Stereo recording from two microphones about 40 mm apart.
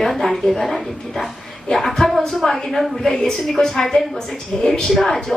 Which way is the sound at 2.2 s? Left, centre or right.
Centre.